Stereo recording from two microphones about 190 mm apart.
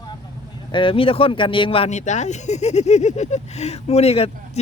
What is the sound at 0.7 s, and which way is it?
Speech, 25° left (ahead or behind).